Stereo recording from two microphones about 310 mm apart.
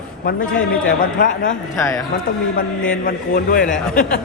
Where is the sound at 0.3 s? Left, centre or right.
Left.